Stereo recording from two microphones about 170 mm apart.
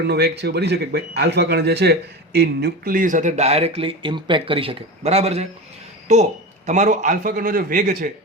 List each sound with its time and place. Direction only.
0.1 s a man's voice: 80° right; by 8.1 s 50° right (ahead or behind)